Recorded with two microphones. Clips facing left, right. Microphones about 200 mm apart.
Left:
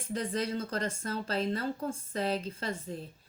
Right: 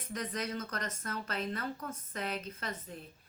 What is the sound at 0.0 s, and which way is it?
Speech, 30° left (ahead or behind).